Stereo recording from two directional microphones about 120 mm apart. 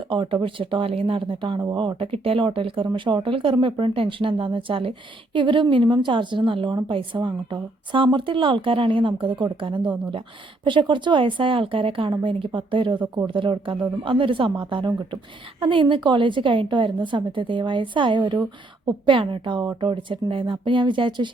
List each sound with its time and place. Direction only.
0.1 s speech: 40° right (ahead or behind)
2.0 s a woman's voice: 55° right (ahead or behind)